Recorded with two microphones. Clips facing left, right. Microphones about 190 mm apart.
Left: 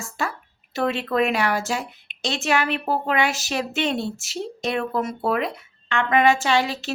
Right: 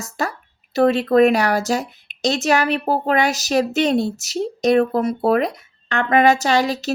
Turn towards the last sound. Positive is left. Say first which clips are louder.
# right 3 dB
turn(degrees=-40)  # may be behind; listen again after turning